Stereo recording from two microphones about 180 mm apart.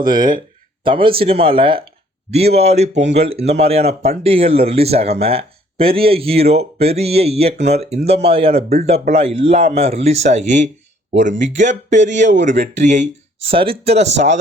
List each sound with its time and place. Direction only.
0.2 s speech: 50° right (ahead or behind)
0.9 s speech: 30° right (ahead or behind)